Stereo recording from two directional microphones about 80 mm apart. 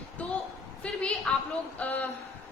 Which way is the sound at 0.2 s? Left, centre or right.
Centre.